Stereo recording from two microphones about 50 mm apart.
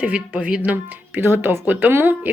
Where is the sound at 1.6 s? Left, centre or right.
Right.